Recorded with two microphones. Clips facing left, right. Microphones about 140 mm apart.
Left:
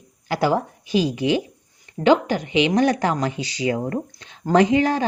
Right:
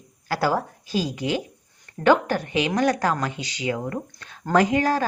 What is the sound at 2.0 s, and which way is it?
Speech, 15° left (ahead or behind).